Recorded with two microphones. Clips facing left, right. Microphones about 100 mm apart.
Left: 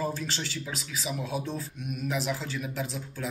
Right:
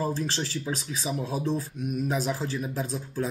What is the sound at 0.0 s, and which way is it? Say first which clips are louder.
Speech: right 3 dB; 35° right (ahead or behind).